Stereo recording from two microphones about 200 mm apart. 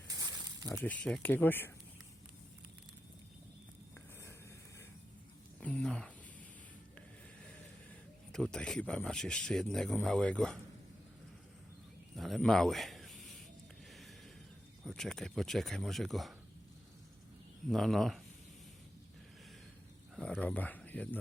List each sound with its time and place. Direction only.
0.1 s a sound: 20° right (ahead or behind)
0.9 s speech: 5° left (ahead or behind)
3.9 s a sound: 15° left (ahead or behind)
5.5 s a sound: 5° left (ahead or behind)
8.3 s speech: 5° left (ahead or behind)
12.1 s a man's voice: centre (ahead or behind)
14.8 s speech: centre (ahead or behind)
17.7 s speech: centre (ahead or behind)
20.1 s speech: centre (ahead or behind)